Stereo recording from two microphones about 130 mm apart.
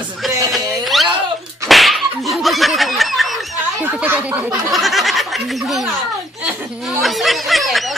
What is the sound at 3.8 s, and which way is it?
Speech, 15° right (ahead or behind).